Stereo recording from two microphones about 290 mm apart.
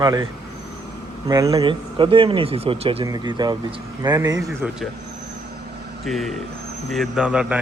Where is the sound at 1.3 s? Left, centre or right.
Centre.